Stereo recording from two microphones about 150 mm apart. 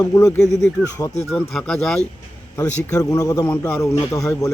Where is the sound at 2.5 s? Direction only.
20° left (ahead or behind).